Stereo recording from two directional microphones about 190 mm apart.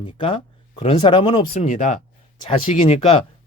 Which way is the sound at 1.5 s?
35° left (ahead or behind).